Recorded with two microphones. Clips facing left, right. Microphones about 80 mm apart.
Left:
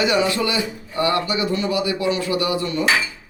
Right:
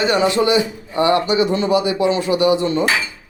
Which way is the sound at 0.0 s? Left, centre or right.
Right.